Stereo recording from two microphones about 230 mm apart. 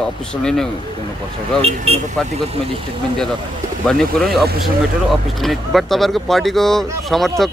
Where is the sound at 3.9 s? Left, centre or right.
Centre.